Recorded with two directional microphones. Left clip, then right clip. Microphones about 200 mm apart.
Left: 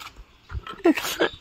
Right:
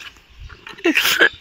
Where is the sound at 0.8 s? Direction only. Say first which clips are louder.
Right 4 dB; 10° left (ahead or behind).